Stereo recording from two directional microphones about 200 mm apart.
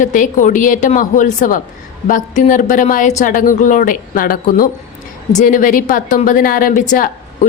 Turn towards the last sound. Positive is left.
turn(degrees=40)  # may be behind; listen again after turning